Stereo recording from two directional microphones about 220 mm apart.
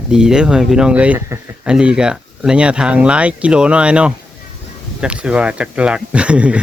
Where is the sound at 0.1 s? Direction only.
5° right (ahead or behind).